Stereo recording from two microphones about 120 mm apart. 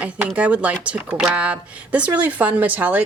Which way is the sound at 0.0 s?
10° right (ahead or behind).